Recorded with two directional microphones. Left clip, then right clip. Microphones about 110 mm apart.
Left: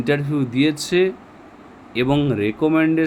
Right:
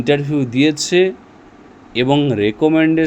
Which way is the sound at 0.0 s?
30° right (ahead or behind).